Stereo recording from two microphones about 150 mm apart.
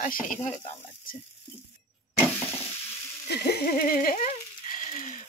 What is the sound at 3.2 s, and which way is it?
Speech, 90° left.